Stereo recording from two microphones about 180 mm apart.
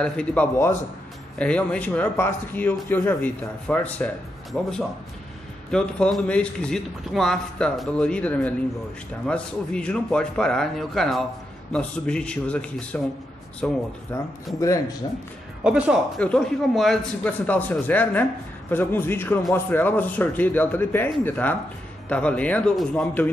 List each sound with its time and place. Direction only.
0.0 s a man's voice: 5° left (ahead or behind)
14.1 s speech: 15° left (ahead or behind)
15.6 s a man's voice: 5° right (ahead or behind)